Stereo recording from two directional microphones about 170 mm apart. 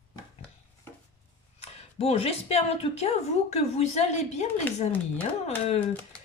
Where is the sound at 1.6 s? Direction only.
35° left (ahead or behind).